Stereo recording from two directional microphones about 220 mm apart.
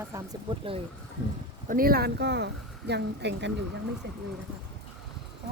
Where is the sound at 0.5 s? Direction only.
20° right (ahead or behind).